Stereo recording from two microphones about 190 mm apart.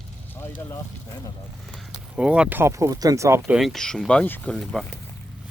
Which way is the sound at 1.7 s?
5° right (ahead or behind).